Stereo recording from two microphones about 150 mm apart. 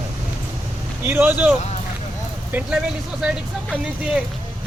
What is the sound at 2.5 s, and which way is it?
Speech, 10° right (ahead or behind).